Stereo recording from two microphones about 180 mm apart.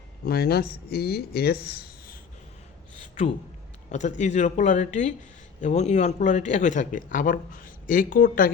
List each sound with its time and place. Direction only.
0.3 s speech: 60° left (ahead or behind)
3.9 s speech: 40° left (ahead or behind)